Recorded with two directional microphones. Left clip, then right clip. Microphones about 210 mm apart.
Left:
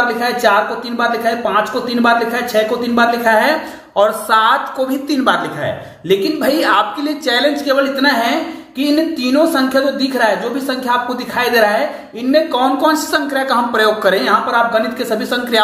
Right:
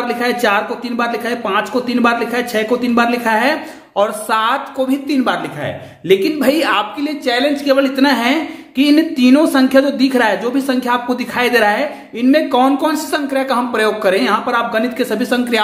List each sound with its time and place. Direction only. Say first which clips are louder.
0.2 s a man's voice: right 2 dB; 45° right (ahead or behind)